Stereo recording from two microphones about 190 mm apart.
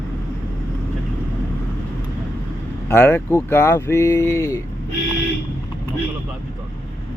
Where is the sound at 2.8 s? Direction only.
15° left (ahead or behind).